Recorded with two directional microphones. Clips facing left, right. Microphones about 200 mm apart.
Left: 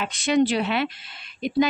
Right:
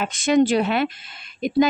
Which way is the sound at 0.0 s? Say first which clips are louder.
Right 3 dB; 45° right (ahead or behind).